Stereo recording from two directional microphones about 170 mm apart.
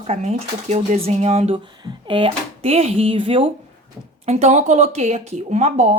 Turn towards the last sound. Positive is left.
turn(degrees=-40)  # may be behind; listen again after turning